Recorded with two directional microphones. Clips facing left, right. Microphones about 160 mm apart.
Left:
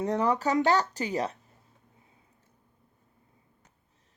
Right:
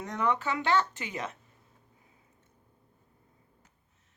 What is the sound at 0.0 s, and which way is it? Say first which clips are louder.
Speech: left 4 dB; 35° left (ahead or behind).